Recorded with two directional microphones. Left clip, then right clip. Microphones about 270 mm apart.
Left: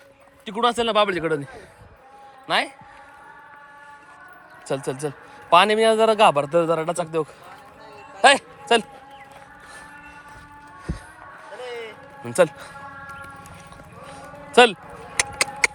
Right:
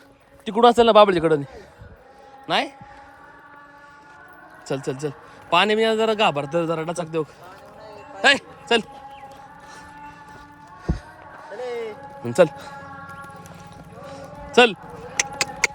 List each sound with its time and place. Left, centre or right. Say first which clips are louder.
0.4 s a man's voice: right 7 dB; centre
2.5 s a man's voice: even; centre
4.7 s a man's voice: even; centre
11.5 s music: right 5 dB; right
12.2 s a man's voice: right 2 dB; centre
14.1 s music: even; centre